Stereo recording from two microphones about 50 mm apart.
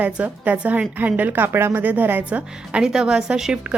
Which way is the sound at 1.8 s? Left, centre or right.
Right.